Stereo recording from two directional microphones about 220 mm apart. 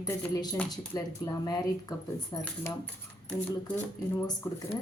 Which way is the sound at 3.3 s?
5° left (ahead or behind).